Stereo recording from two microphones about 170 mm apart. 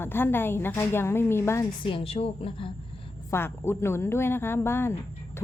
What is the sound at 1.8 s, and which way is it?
Speech, 30° left (ahead or behind).